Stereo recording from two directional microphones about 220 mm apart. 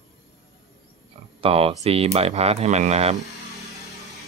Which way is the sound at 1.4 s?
25° right (ahead or behind).